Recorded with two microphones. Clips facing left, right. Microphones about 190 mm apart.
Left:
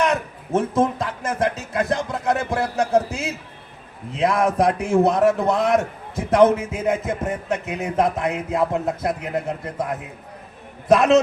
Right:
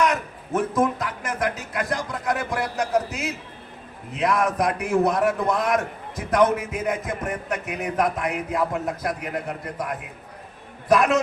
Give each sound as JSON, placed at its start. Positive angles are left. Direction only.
{"t": 0.0, "sound": "a man's voice", "side_deg": 25}